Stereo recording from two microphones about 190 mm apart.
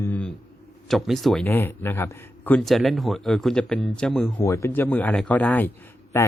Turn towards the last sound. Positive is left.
turn(degrees=15)  # may be behind; listen again after turning